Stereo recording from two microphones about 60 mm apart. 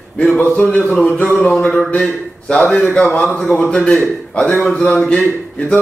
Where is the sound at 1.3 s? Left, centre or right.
Centre.